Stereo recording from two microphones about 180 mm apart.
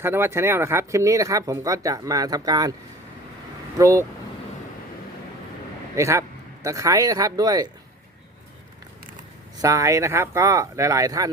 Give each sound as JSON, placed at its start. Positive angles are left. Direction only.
{"t": 0.0, "sound": "speech", "side_deg": -15}
{"t": 3.8, "sound": "speech", "side_deg": -15}
{"t": 6.0, "sound": "a man's voice", "side_deg": -15}
{"t": 9.6, "sound": "speech", "side_deg": -20}